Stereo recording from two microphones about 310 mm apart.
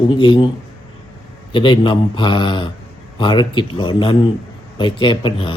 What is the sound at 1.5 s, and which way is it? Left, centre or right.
Speech, centre.